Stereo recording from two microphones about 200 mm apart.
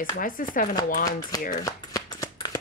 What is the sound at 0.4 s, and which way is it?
Speech, 45° left (ahead or behind).